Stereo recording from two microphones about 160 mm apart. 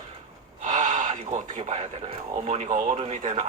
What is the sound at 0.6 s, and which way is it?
Speech, 50° right (ahead or behind).